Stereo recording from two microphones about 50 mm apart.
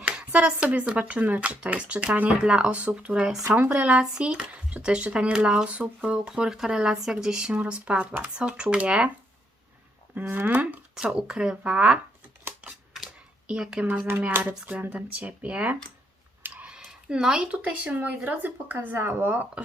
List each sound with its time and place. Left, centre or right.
0.3 s speech: right
6.3 s speech: centre
7.5 s speech: right
10.2 s speech: right
11.0 s speech: centre
12.6 s typewriter: right
13.5 s speech: centre
14.4 s speech: right
16.4 s a sound: right
16.8 s speech: centre; by 19.5 s right